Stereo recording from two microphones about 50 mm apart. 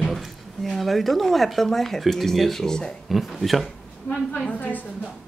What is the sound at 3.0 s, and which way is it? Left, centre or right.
Speech, centre.